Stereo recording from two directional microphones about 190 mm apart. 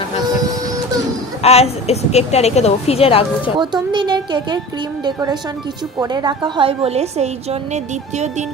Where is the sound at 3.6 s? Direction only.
25° right (ahead or behind).